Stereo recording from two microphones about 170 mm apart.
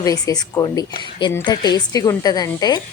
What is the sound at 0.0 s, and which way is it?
A woman's voice, 20° left (ahead or behind).